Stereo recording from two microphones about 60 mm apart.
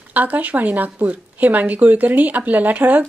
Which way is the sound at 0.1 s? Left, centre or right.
Right.